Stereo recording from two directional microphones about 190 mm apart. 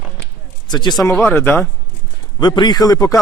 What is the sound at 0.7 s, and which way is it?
Speech, 20° left (ahead or behind).